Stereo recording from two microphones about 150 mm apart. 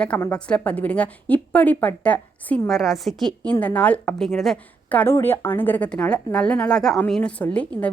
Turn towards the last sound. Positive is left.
turn(degrees=10)  # may be behind; listen again after turning